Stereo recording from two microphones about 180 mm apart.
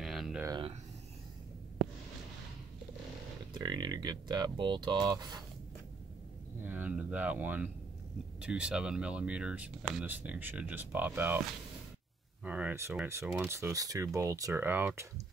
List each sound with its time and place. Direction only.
0.0 s a sound: centre (ahead or behind)
3.5 s speech: 25° right (ahead or behind)
6.6 s speech: 10° right (ahead or behind)
12.4 s speech: 10° right (ahead or behind)